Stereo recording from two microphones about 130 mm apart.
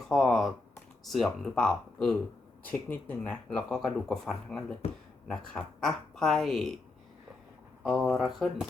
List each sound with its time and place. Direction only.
0.1 s typing: centre (ahead or behind)
1.0 s speech: centre (ahead or behind)
4.8 s speech: 55° left (ahead or behind)
5.3 s speech: 5° left (ahead or behind)
7.9 s speech: centre (ahead or behind)